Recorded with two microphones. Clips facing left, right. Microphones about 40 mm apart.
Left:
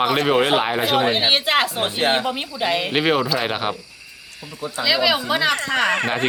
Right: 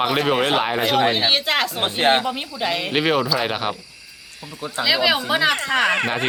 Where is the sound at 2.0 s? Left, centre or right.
Right.